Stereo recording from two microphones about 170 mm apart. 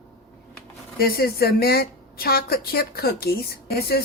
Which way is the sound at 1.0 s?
60° left (ahead or behind).